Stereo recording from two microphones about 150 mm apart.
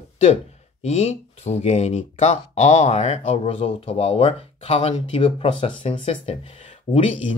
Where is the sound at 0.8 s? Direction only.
45° left (ahead or behind).